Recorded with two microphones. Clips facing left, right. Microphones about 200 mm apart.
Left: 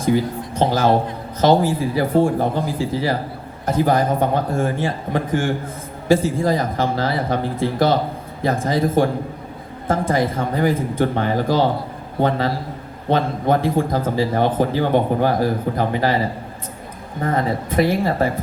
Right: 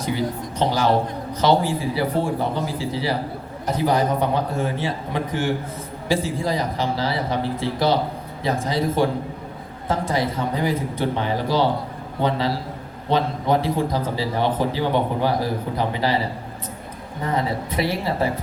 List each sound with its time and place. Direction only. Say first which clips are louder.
0.0 s a man's voice: left 5 dB; 50° left (ahead or behind)
17.2 s a man's voice: left 3 dB; 50° left (ahead or behind)